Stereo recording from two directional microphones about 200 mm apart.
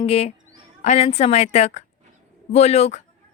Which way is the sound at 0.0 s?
30° left (ahead or behind).